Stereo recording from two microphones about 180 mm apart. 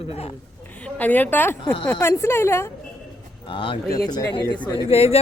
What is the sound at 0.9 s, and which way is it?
A woman's voice, 10° left (ahead or behind).